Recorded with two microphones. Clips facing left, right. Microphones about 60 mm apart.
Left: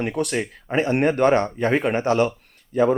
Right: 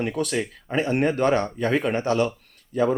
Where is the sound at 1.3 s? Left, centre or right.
Centre.